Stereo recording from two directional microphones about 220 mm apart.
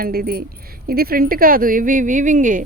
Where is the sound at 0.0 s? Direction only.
45° right (ahead or behind).